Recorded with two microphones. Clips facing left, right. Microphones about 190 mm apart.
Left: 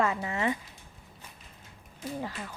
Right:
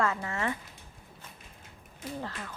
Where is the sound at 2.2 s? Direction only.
10° left (ahead or behind).